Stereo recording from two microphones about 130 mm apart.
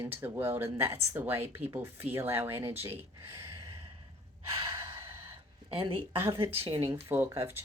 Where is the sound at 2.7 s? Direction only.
50° right (ahead or behind).